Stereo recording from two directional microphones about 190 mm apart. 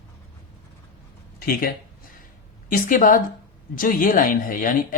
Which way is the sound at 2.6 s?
45° left (ahead or behind).